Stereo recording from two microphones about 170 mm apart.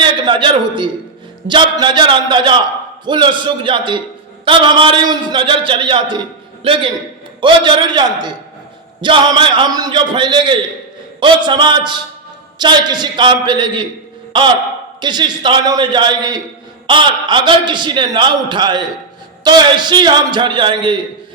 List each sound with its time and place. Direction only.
0.0 s a man's voice: 30° right (ahead or behind)
15.0 s a man's voice: 25° right (ahead or behind)